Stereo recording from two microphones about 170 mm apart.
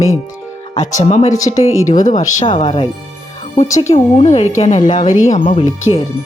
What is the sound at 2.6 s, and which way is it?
Speech, 30° left (ahead or behind).